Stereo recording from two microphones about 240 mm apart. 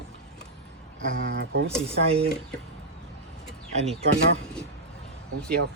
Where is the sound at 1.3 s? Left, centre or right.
Right.